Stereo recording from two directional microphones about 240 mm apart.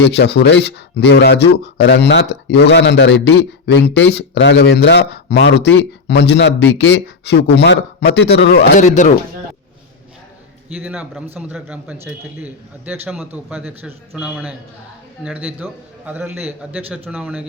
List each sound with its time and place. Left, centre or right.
0.0 s speech: left
10.8 s a man's voice: centre